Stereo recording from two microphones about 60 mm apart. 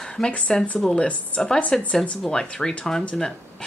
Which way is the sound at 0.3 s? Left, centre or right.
Centre.